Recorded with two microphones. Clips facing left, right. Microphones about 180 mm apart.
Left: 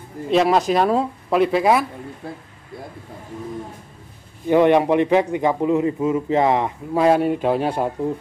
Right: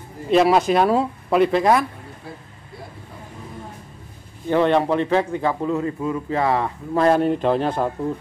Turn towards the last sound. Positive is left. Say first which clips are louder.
# even
turn(degrees=10)  # may be behind; listen again after turning